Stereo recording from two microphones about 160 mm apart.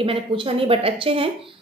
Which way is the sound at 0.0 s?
35° right (ahead or behind).